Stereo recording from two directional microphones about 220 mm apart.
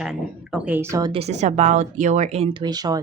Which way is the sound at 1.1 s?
30° right (ahead or behind).